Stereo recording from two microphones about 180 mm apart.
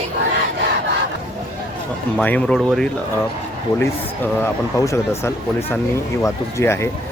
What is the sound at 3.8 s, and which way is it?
Speech, 10° left (ahead or behind).